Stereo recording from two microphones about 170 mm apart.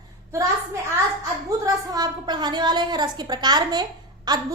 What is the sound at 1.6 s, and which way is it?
A woman's voice, 25° right (ahead or behind).